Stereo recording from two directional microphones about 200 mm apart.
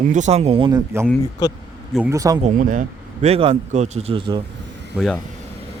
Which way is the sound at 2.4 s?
40° right (ahead or behind).